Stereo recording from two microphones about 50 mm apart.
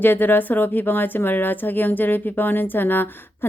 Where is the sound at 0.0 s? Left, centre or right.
Left.